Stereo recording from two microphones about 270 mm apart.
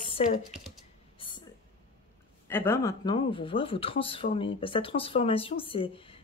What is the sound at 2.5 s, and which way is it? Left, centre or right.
Speech, centre.